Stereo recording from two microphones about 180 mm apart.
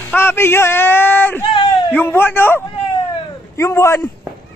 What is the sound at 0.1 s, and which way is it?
A man's voice, 10° left (ahead or behind).